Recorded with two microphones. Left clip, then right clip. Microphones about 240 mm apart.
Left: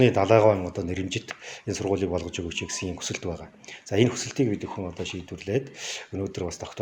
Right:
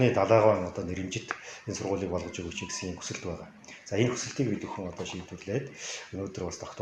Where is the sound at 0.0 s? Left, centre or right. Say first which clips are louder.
Left 4 dB; left.